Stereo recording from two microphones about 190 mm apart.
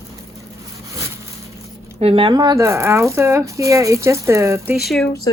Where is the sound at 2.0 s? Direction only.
30° right (ahead or behind); by 4.8 s 15° right (ahead or behind).